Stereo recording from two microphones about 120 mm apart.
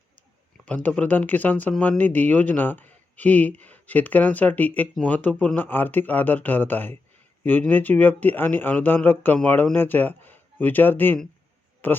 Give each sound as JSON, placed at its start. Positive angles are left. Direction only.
{"t": 0.5, "sound": "speech", "side_deg": 10}